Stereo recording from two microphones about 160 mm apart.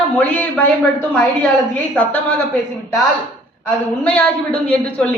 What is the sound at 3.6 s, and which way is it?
A woman's voice, 10° left (ahead or behind).